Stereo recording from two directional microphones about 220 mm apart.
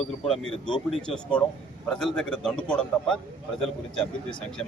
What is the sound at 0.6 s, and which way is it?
A man's voice, 5° left (ahead or behind).